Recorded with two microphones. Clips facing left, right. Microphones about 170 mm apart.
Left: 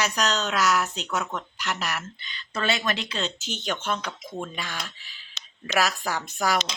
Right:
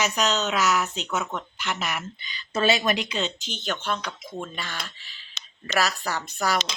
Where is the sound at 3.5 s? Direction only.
10° left (ahead or behind).